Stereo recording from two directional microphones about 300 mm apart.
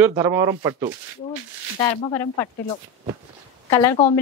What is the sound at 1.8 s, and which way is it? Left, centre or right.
Speech, centre.